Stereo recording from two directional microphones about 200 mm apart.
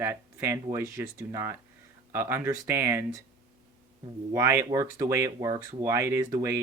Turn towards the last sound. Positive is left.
turn(degrees=-15)  # may be behind; listen again after turning